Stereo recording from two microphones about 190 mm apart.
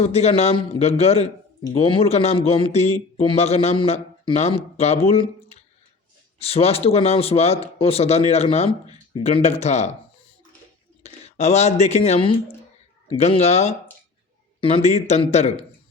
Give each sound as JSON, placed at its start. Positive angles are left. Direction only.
{"t": 0.0, "sound": "a man's voice", "side_deg": 35}
{"t": 11.0, "sound": "a man's voice", "side_deg": 35}